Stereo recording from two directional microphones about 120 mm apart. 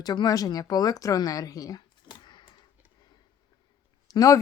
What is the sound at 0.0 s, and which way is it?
Speech, 35° left (ahead or behind).